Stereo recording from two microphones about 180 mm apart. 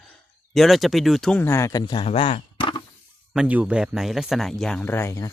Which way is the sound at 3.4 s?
5° right (ahead or behind).